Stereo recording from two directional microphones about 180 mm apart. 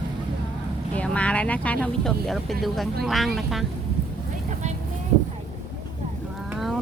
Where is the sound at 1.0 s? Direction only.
5° left (ahead or behind).